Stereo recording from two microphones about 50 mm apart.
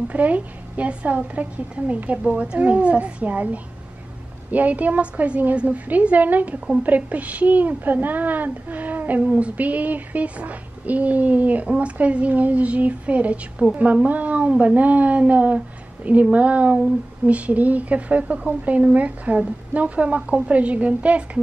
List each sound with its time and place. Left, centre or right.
0.1 s a woman's voice: right